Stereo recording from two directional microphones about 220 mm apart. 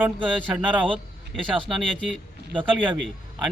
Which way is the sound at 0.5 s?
5° right (ahead or behind).